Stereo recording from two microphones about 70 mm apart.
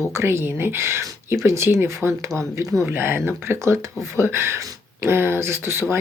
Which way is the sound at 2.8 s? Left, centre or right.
Right.